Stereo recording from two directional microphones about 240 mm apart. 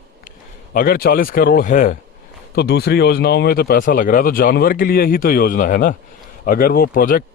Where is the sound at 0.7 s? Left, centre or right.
Left.